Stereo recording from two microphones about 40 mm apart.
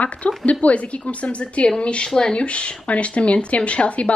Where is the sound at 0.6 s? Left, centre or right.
Left.